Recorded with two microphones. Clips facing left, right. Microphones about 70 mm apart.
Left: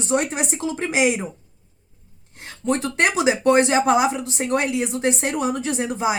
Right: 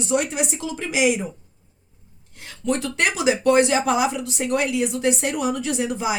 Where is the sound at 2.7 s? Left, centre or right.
Left.